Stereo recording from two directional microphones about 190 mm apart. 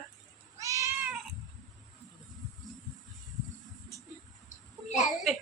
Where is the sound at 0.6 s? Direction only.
15° right (ahead or behind).